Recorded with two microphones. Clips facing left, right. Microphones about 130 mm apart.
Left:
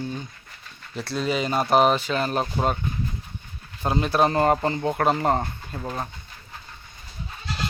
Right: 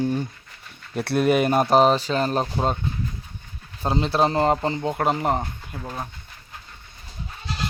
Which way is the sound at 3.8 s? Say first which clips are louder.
Even; 25° right (ahead or behind).